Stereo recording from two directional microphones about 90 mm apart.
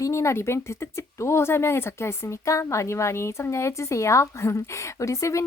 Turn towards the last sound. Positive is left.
turn(degrees=35)  # may be behind; listen again after turning